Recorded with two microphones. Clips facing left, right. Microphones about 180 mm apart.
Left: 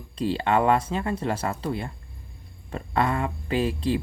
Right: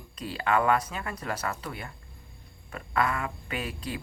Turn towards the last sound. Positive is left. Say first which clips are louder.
# left 10 dB
turn(degrees=30)  # may be behind; listen again after turning